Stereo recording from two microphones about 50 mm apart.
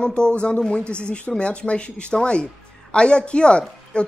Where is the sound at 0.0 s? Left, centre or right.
Centre.